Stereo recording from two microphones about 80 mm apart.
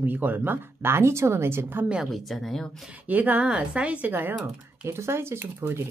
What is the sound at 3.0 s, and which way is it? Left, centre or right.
A woman's voice, right.